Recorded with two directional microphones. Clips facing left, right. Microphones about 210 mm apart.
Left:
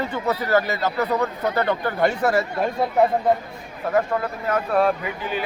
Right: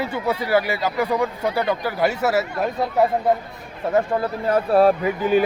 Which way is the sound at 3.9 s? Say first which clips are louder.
Right 2 dB; 30° right (ahead or behind).